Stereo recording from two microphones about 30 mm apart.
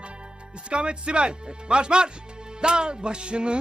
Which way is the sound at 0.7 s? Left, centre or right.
Right.